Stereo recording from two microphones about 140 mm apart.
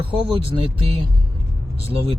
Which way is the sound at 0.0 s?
40° right (ahead or behind).